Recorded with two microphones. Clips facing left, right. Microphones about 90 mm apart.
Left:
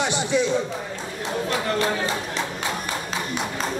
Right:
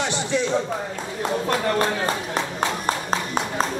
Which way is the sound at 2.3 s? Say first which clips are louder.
Right 3 dB; 45° right (ahead or behind).